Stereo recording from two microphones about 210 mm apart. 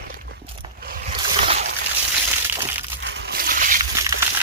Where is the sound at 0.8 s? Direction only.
45° right (ahead or behind).